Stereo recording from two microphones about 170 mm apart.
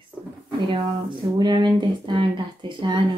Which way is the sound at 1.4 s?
25° right (ahead or behind).